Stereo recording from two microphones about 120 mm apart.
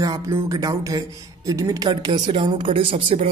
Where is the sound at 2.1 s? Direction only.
45° right (ahead or behind).